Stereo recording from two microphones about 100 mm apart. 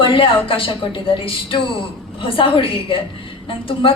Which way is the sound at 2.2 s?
65° left (ahead or behind).